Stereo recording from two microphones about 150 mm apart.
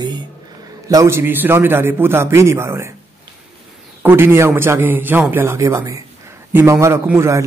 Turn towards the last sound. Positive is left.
turn(degrees=-20)  # may be behind; listen again after turning